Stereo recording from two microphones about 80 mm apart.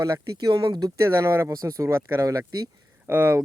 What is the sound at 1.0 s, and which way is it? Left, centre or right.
Speech, right.